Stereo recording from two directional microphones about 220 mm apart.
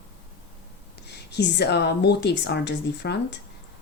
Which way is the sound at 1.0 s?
50° left (ahead or behind).